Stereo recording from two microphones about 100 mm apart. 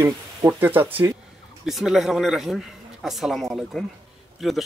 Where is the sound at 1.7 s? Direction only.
Centre (ahead or behind).